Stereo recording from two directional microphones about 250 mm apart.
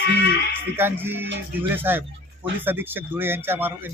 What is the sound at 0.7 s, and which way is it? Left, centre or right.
A man's voice, centre.